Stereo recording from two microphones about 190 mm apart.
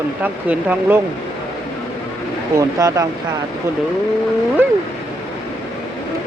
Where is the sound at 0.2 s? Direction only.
10° right (ahead or behind).